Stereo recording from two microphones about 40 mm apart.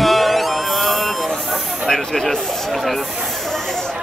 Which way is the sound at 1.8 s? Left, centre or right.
Centre.